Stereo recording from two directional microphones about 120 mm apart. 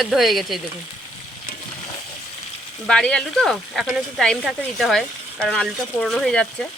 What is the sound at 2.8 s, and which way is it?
Speech, 10° left (ahead or behind).